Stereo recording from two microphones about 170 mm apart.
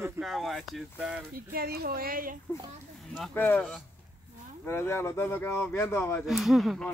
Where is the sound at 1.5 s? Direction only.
60° right (ahead or behind).